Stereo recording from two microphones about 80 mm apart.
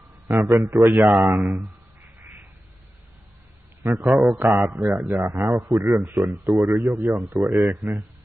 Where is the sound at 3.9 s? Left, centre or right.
Right.